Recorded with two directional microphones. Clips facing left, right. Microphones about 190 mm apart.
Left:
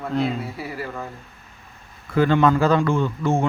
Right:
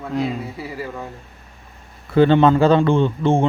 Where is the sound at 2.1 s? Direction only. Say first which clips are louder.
Right 4 dB; 30° right (ahead or behind).